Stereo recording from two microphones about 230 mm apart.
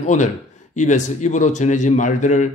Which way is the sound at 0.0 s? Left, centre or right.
Left.